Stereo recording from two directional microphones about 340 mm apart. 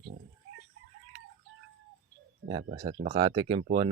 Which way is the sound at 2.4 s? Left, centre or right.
Centre.